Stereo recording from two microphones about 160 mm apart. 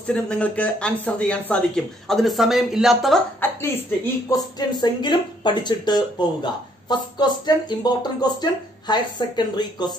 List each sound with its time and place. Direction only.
0.0 s speech: 5° left (ahead or behind)
3.3 s speech: 15° left (ahead or behind)
4.3 s speech: 25° left (ahead or behind)